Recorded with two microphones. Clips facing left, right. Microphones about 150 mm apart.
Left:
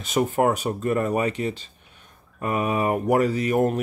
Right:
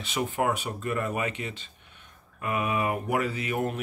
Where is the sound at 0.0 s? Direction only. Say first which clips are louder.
Left 7 dB; 45° left (ahead or behind).